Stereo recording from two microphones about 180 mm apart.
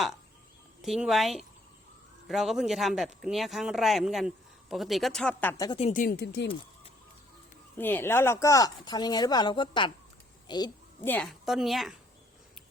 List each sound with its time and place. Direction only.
0.8 s speech: centre (ahead or behind)
5.6 s speech: 30° left (ahead or behind)
5.9 s speech: 50° left (ahead or behind)
6.2 s speech: 70° left (ahead or behind)
7.8 s speech: 10° left (ahead or behind)
11.0 s speech: 10° left (ahead or behind)